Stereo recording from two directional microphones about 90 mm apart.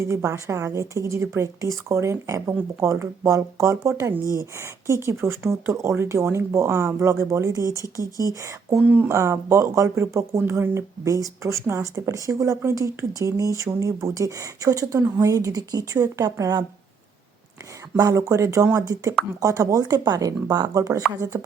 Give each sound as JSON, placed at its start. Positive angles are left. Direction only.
{"t": 0.0, "sound": "speech", "side_deg": -35}
{"t": 8.8, "sound": "speech", "side_deg": -25}
{"t": 17.9, "sound": "speech", "side_deg": -40}